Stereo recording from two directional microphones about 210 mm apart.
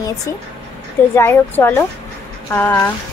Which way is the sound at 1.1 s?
10° left (ahead or behind).